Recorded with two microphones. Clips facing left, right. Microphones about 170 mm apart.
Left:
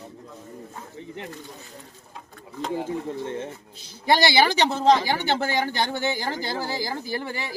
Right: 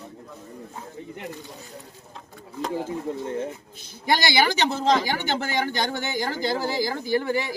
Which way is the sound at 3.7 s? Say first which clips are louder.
Right 1 dB; 50° right (ahead or behind).